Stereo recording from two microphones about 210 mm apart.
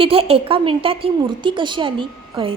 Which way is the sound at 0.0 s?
25° right (ahead or behind).